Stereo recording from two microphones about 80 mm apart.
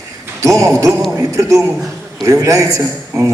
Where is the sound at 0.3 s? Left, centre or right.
Right.